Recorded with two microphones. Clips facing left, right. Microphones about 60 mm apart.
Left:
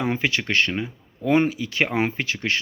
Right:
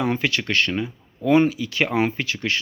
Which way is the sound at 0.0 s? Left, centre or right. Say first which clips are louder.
Right 1 dB; left.